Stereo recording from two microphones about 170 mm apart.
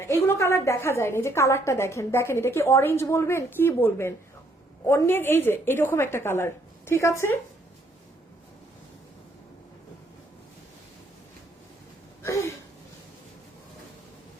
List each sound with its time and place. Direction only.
0.0 s a woman's voice: 15° left (ahead or behind)